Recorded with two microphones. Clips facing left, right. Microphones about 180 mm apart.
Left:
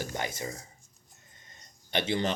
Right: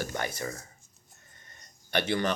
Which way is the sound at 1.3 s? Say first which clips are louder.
Right 1 dB; 20° left (ahead or behind).